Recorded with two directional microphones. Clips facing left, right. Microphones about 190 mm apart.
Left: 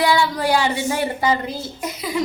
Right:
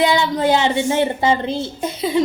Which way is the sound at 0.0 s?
20° right (ahead or behind).